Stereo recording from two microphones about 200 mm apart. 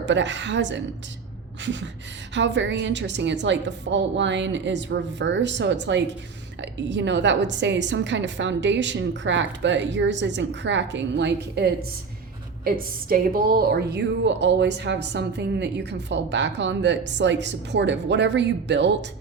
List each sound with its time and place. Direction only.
0.0 s a woman's voice: 65° right (ahead or behind)